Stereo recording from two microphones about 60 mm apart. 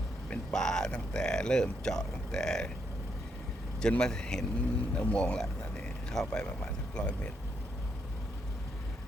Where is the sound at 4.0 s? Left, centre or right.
Centre.